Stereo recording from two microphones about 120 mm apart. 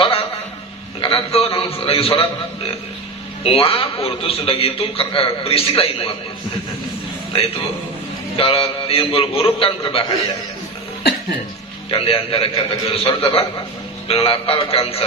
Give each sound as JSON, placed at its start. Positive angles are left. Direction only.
{"t": 0.0, "sound": "a sound", "side_deg": 50}
{"t": 1.0, "sound": "a man's voice", "side_deg": 50}
{"t": 3.4, "sound": "a man's voice", "side_deg": 50}
{"t": 8.4, "sound": "a man's voice", "side_deg": 50}
{"t": 11.9, "sound": "a man's voice", "side_deg": 50}